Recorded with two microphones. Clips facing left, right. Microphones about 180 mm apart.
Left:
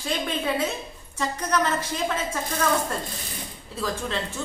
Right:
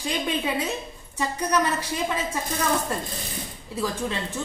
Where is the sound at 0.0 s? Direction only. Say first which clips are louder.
Right 1 dB; 15° right (ahead or behind).